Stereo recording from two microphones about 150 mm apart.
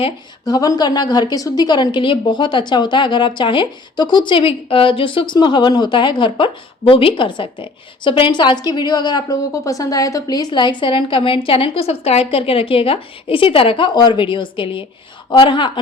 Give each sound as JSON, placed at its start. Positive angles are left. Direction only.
{"t": 0.0, "sound": "a woman's voice", "side_deg": 25}